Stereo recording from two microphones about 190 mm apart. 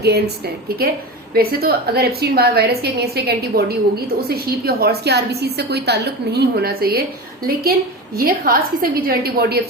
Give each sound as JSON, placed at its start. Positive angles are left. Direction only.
{"t": 0.0, "sound": "a woman's voice", "side_deg": -60}
{"t": 8.1, "sound": "a woman's voice", "side_deg": -50}